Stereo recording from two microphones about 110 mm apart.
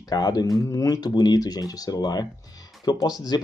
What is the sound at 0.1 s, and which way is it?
Speech, 35° left (ahead or behind).